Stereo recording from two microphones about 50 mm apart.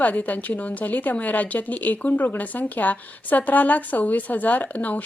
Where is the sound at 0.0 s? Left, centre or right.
Left.